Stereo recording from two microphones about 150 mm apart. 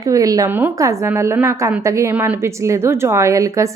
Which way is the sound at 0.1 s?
25° right (ahead or behind).